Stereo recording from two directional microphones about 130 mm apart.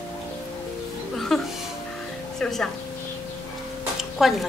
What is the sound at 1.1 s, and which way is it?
Music, centre (ahead or behind).